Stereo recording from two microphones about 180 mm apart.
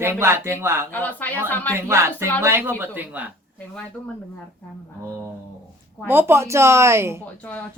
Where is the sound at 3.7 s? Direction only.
5° left (ahead or behind).